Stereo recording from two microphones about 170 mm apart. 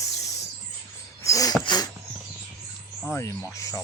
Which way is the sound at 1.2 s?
20° left (ahead or behind).